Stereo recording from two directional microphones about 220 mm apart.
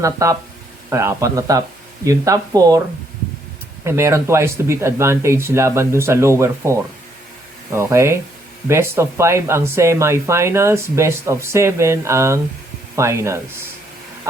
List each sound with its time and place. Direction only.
0.0 s speech: 15° right (ahead or behind)
3.8 s speech: 10° right (ahead or behind)